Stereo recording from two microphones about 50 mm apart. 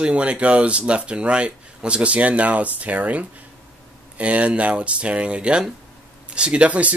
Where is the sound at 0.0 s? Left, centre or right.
Right.